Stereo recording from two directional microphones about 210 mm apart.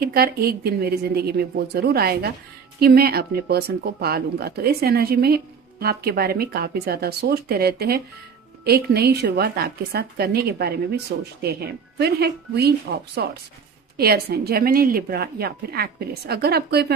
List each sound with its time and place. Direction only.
0.0 s speech: 45° right (ahead or behind)